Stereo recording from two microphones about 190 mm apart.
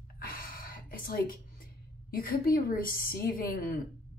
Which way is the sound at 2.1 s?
50° left (ahead or behind).